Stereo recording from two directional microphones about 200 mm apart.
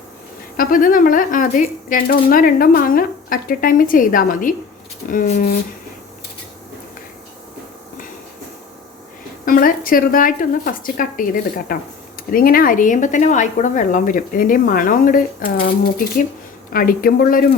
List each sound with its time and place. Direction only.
0.5 s speech: 45° left (ahead or behind)
9.5 s speech: 45° left (ahead or behind)
16.7 s speech: 45° left (ahead or behind)